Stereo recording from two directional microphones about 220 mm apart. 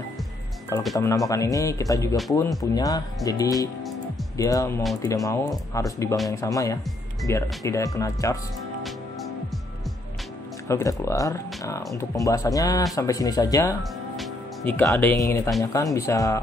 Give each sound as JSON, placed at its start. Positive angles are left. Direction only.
{"t": 0.9, "sound": "speech", "side_deg": 15}
{"t": 10.7, "sound": "speech", "side_deg": 15}
{"t": 14.1, "sound": "speech", "side_deg": 5}